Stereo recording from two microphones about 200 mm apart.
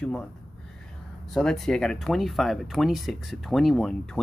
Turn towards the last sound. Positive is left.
turn(degrees=0)  # may be behind; listen again after turning